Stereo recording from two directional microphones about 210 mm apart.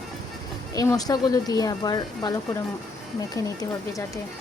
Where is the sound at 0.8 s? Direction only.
15° left (ahead or behind).